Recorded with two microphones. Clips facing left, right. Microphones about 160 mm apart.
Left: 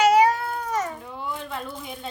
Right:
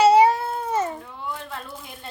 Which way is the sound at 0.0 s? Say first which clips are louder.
Right 2 dB; 30° right (ahead or behind).